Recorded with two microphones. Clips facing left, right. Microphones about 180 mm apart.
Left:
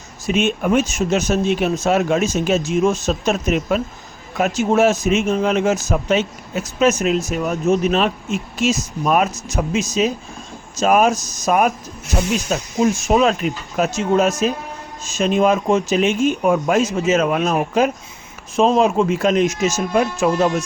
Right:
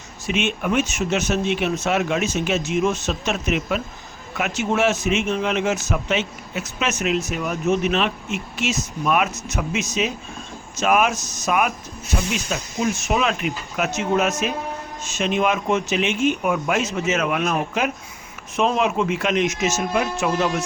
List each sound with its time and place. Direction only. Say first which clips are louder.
0.3 s speech: left 5 dB; 40° left (ahead or behind)